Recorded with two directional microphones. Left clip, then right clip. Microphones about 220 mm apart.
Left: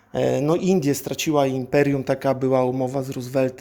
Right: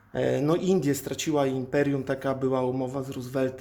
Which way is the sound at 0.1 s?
25° left (ahead or behind).